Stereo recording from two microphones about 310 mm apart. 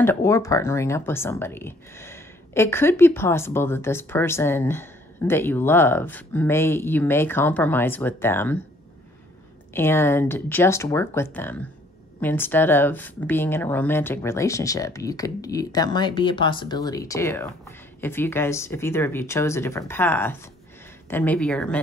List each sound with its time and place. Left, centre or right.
0.0 s speech: centre
9.8 s speech: centre